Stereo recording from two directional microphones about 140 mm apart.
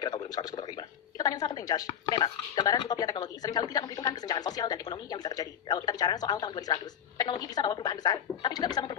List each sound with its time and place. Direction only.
0.0 s a woman's voice: 30° left (ahead or behind)